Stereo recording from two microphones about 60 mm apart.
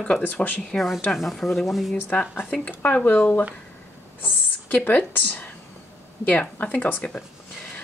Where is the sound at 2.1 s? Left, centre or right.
Centre.